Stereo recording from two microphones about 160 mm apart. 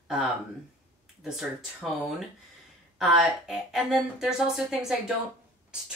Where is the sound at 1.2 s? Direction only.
5° right (ahead or behind).